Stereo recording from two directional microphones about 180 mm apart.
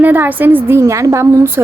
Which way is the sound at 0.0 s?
10° right (ahead or behind).